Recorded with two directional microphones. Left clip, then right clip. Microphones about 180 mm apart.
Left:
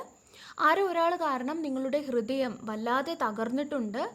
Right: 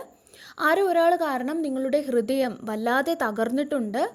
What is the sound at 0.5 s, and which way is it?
A woman's voice, 25° right (ahead or behind).